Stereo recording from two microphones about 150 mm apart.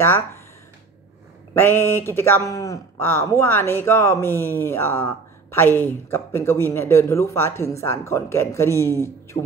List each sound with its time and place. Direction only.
1.5 s speech: 15° left (ahead or behind)